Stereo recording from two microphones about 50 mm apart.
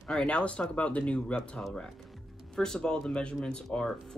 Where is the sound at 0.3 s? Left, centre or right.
Left.